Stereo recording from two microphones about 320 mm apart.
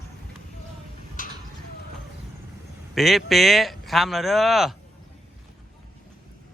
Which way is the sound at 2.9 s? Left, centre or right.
Centre.